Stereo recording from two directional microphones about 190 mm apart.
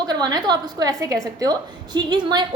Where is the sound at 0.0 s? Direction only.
20° right (ahead or behind).